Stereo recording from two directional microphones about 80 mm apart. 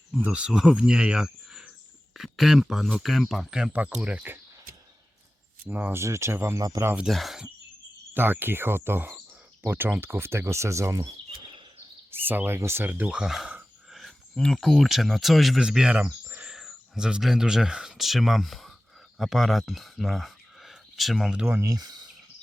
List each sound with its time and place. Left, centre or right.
0.1 s speech: centre
3.7 s cricket: centre
3.9 s speech: centre
5.6 s cricket: centre
5.9 s speech: right
7.1 s speech: centre
8.1 s cricket: right
9.6 s speech: right
11.0 s a sound: right
12.2 s cricket: right
13.1 s speech: centre
13.9 s a sound: centre
14.4 s speech: centre
21.6 s speech: right